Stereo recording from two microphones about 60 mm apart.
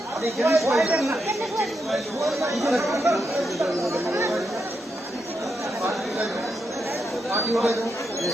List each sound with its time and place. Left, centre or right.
0.4 s speech: right
1.5 s speech: centre
3.8 s speech: right
7.3 s speech: right